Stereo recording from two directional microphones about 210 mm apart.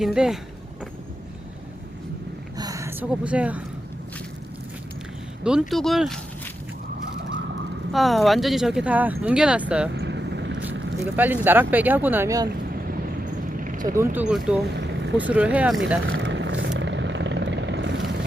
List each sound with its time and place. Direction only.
0.0 s speech: centre (ahead or behind)
2.6 s a sound: 15° right (ahead or behind)
5.4 s speech: 5° right (ahead or behind)
7.9 s speech: centre (ahead or behind)
9.9 s vehicle: 55° right (ahead or behind)
11.0 s speech: 10° right (ahead or behind)
12.6 s vehicle: 45° right (ahead or behind)
13.9 s speech: 10° right (ahead or behind)
14.8 s vehicle: 55° right (ahead or behind)
15.3 s speech: 5° right (ahead or behind)
16.0 s vehicle: 60° right (ahead or behind)